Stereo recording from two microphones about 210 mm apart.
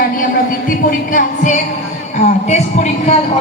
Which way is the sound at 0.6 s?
40° left (ahead or behind).